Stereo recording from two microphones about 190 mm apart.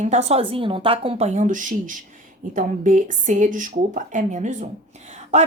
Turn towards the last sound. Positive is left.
turn(degrees=-40)  # may be behind; listen again after turning